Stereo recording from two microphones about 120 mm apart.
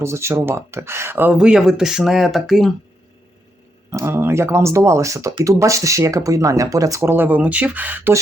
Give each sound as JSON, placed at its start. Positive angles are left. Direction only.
{"t": 0.0, "sound": "speech", "side_deg": -25}
{"t": 1.4, "sound": "speech", "side_deg": -5}
{"t": 3.9, "sound": "speech", "side_deg": -20}